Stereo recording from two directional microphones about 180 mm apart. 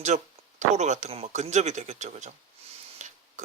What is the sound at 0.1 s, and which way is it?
Speech, 45° right (ahead or behind).